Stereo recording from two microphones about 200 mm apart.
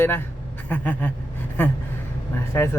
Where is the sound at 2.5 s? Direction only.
10° left (ahead or behind).